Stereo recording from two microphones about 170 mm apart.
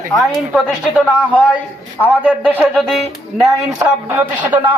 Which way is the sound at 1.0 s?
5° right (ahead or behind).